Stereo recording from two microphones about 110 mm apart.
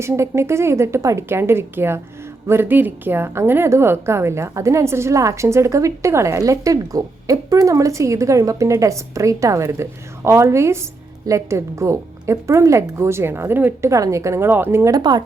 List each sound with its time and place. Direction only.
0.0 s a woman's voice: 25° right (ahead or behind)
14.9 s speech: 40° right (ahead or behind)